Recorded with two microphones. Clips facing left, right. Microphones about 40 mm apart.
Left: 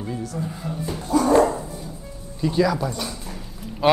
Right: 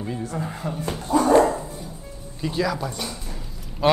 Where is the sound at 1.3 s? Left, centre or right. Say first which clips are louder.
Right 1 dB; centre.